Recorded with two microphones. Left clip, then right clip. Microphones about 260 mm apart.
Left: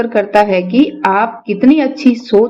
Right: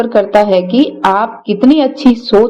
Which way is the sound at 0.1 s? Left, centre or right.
Centre.